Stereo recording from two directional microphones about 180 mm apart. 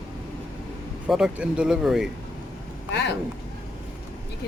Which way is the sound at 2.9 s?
75° left (ahead or behind).